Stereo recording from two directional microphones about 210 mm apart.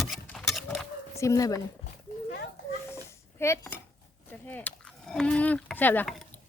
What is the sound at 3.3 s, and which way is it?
Speech, 10° left (ahead or behind).